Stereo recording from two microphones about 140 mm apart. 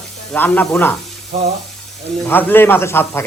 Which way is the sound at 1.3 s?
50° right (ahead or behind).